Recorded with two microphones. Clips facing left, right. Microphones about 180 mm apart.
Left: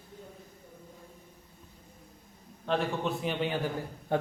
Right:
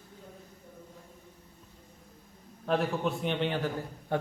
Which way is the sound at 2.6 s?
Centre (ahead or behind).